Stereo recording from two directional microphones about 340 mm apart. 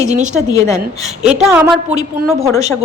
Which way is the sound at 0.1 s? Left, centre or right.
Right.